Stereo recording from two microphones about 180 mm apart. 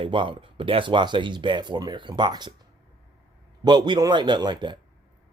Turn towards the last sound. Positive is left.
turn(degrees=-25)  # may be behind; listen again after turning